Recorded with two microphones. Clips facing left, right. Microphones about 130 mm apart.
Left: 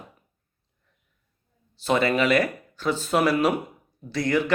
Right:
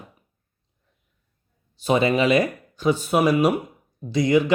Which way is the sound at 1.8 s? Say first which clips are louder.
Right 2 dB; 15° right (ahead or behind).